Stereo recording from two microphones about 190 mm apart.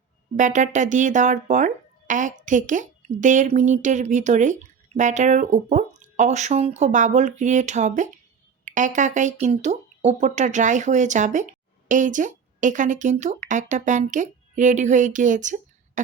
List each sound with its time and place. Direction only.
0.3 s speech: 40° right (ahead or behind)